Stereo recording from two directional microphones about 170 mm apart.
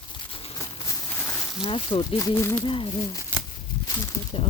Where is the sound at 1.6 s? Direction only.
30° left (ahead or behind).